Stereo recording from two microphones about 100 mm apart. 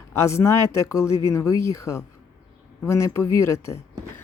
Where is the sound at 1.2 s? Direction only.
30° left (ahead or behind).